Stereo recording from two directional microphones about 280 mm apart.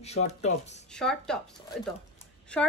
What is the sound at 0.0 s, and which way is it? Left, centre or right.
Speech, left.